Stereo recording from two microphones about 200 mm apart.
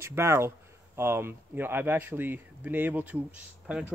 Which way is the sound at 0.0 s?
15° right (ahead or behind).